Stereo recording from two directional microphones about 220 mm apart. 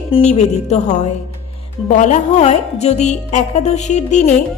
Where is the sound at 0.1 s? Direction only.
30° left (ahead or behind).